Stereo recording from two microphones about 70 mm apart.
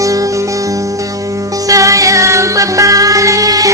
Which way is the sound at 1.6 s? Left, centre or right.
Right.